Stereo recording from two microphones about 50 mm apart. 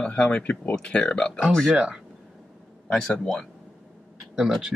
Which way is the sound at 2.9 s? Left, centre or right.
Centre.